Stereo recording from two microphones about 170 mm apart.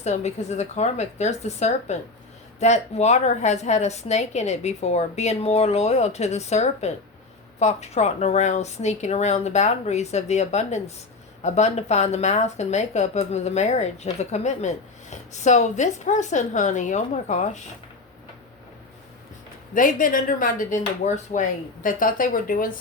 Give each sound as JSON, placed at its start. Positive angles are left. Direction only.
{"t": 0.0, "sound": "a woman's voice", "side_deg": 40}
{"t": 19.7, "sound": "speech", "side_deg": 55}